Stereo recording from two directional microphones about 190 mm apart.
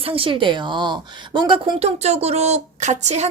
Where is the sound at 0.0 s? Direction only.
30° right (ahead or behind).